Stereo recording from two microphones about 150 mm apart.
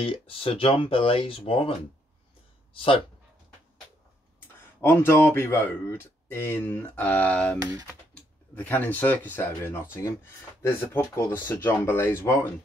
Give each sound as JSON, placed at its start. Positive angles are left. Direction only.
{"t": 0.0, "sound": "speech", "side_deg": 40}
{"t": 4.8, "sound": "speech", "side_deg": 15}
{"t": 7.5, "sound": "speech", "side_deg": -25}
{"t": 8.6, "sound": "speech", "side_deg": 10}